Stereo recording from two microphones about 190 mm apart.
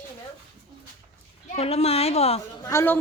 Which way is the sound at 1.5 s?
35° left (ahead or behind).